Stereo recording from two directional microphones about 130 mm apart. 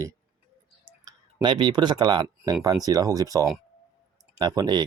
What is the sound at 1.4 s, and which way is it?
Speech, 35° right (ahead or behind).